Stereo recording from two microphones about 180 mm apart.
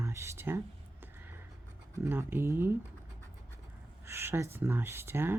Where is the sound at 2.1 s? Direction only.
15° right (ahead or behind).